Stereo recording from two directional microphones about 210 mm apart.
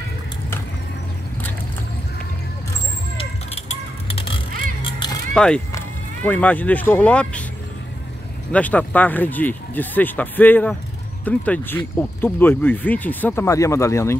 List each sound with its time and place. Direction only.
3.2 s a sound: 25° left (ahead or behind)
4.8 s music: 25° left (ahead or behind)
5.3 s speech: 5° left (ahead or behind)
8.5 s speech: 5° left (ahead or behind)